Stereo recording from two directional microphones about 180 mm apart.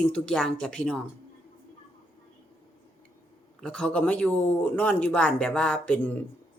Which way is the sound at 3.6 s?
5° left (ahead or behind).